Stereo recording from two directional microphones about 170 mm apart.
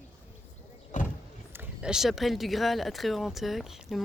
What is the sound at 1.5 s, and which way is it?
Speech, 5° right (ahead or behind).